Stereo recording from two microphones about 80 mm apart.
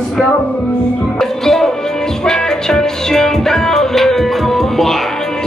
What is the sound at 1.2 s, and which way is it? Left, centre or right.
Music, centre.